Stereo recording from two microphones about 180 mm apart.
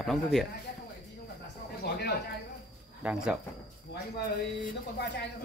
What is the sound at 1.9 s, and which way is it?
Speech, 65° left (ahead or behind).